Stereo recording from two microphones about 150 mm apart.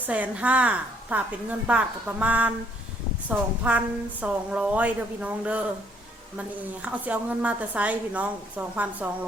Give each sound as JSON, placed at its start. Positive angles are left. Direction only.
{"t": 0.0, "sound": "a woman's voice", "side_deg": -10}
{"t": 6.8, "sound": "a woman's voice", "side_deg": -10}